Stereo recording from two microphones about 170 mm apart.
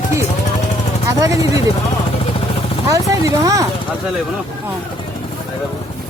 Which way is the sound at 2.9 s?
20° right (ahead or behind).